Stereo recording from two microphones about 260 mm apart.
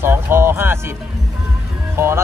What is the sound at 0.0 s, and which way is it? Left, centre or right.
Music, centre.